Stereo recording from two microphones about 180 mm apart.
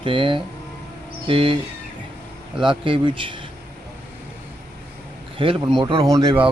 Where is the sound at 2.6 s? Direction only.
30° right (ahead or behind).